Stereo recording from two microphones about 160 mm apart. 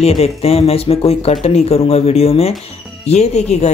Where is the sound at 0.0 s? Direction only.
40° left (ahead or behind).